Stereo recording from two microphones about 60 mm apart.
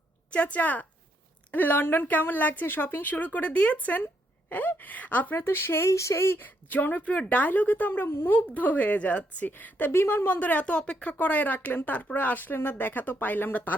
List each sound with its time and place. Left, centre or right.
0.3 s a woman's voice: left
6.4 s a woman's voice: left